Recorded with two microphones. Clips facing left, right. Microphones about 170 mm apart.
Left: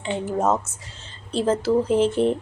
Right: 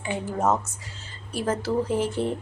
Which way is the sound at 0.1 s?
20° left (ahead or behind).